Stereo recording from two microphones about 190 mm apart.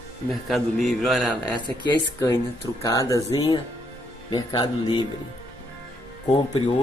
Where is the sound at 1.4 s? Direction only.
20° left (ahead or behind).